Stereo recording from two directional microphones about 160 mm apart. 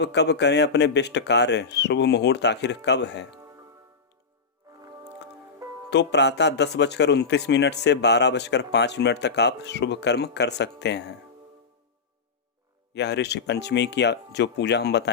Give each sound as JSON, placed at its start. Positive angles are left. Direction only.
{"t": 0.0, "sound": "speech", "side_deg": 90}
{"t": 4.8, "sound": "music", "side_deg": -20}
{"t": 5.9, "sound": "speech", "side_deg": 90}
{"t": 12.9, "sound": "speech", "side_deg": 90}